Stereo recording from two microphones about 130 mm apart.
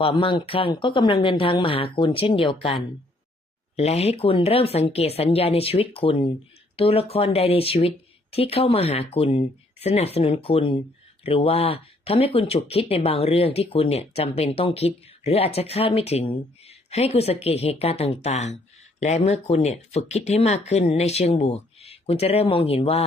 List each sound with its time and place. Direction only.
0.0 s speech: 40° left (ahead or behind)